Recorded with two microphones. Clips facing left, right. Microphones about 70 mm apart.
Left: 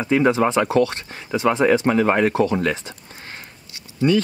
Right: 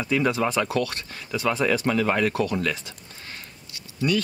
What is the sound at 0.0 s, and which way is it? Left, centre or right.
Speech, left.